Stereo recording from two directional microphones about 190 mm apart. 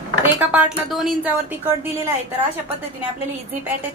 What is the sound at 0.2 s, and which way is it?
A woman's voice, 10° right (ahead or behind).